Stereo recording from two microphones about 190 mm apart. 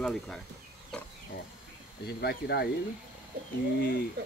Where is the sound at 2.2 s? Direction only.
55° left (ahead or behind).